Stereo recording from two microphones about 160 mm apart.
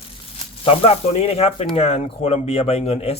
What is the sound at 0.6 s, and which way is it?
A man's voice, 40° left (ahead or behind).